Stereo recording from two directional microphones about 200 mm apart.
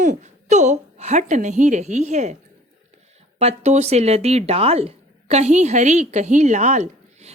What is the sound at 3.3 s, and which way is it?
Speech, 35° right (ahead or behind).